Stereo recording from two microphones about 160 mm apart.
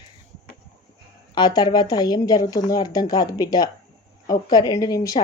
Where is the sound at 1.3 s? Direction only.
25° left (ahead or behind).